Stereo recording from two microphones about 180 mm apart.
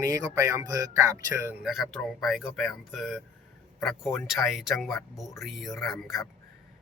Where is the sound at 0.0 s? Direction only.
15° right (ahead or behind).